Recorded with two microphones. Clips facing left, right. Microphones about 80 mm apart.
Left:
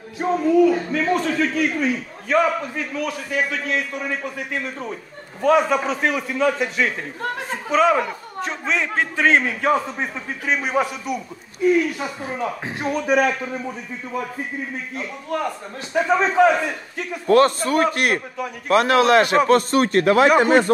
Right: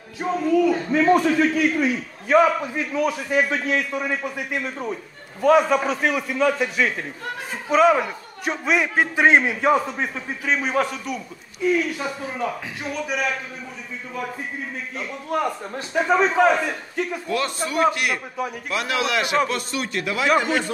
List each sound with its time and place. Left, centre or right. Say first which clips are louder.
0.2 s speech: left 3 dB; centre
0.9 s a man's voice: right 3 dB; centre
4.1 s a man's voice: even; centre
9.8 s a man's voice: even; centre
12.8 s a man's voice: left 7 dB; left
15.9 s a man's voice: even; centre
17.3 s a man's voice: left 15 dB; left